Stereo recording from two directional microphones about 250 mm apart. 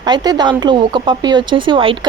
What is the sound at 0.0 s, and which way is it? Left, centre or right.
A woman's voice, centre.